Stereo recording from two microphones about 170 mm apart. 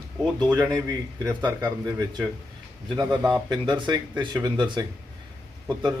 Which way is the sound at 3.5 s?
25° right (ahead or behind).